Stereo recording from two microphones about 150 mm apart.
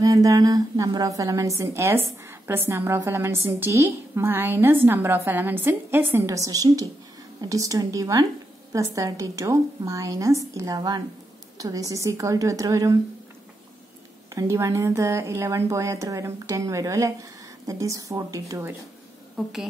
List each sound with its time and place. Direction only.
0.0 s a woman's voice: 25° right (ahead or behind)
14.3 s a woman's voice: 20° right (ahead or behind)
19.3 s a woman's voice: centre (ahead or behind)